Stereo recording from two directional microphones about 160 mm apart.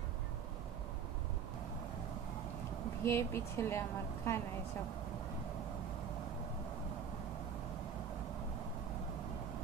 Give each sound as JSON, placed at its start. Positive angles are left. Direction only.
{"t": 3.0, "sound": "a woman's voice", "side_deg": 15}